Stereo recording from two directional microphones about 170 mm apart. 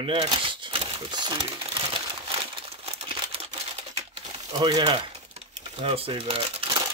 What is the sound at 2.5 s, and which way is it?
Crumpling, 35° right (ahead or behind).